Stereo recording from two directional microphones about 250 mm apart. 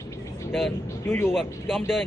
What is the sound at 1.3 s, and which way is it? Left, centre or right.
Speech, centre.